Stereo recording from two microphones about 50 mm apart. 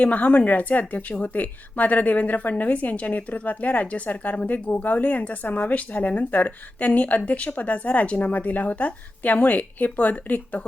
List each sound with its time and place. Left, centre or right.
0.0 s a woman's voice: left